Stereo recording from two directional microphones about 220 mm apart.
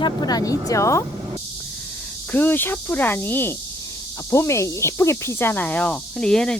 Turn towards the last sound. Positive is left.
turn(degrees=5)  # may be behind; listen again after turning